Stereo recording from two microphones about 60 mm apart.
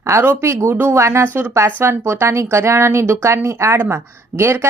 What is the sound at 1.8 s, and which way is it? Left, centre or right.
Speech, right.